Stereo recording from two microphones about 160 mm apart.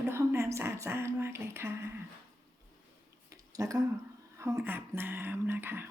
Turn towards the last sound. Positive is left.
turn(degrees=-15)  # may be behind; listen again after turning